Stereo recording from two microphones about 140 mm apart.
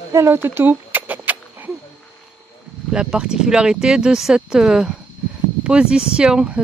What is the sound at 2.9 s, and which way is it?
Speech, 5° right (ahead or behind).